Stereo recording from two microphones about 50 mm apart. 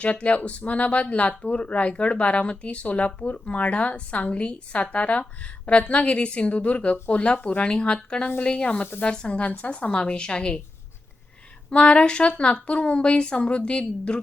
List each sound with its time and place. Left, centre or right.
0.0 s speech: left
9.9 s speech: centre
11.7 s speech: left